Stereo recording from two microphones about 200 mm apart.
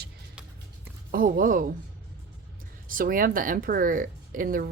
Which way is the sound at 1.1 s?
45° right (ahead or behind).